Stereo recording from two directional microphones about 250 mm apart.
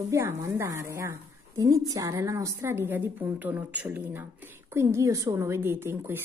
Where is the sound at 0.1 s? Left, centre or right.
Centre.